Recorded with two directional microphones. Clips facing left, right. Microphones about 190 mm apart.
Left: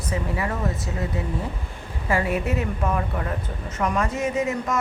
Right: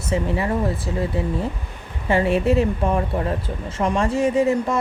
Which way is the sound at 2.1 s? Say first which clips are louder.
Right 6 dB; 25° right (ahead or behind).